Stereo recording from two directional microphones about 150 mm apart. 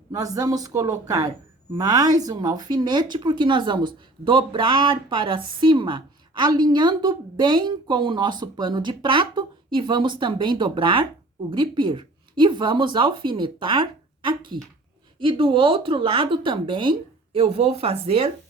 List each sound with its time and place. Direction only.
0.1 s a woman's voice: 25° right (ahead or behind); by 18.3 s 40° right (ahead or behind)